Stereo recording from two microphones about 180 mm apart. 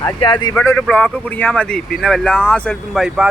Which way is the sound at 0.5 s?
10° left (ahead or behind).